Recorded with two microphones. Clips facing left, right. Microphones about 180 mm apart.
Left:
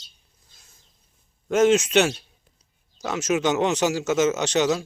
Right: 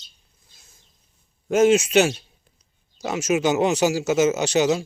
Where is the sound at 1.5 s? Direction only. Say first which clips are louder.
Right 1 dB; 10° right (ahead or behind).